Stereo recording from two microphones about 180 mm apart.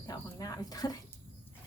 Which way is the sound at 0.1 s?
20° left (ahead or behind).